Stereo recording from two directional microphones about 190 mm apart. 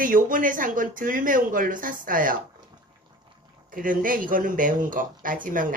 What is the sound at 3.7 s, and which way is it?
Speech, 45° right (ahead or behind).